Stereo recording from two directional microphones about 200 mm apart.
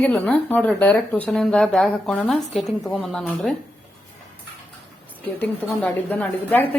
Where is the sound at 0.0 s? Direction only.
5° left (ahead or behind).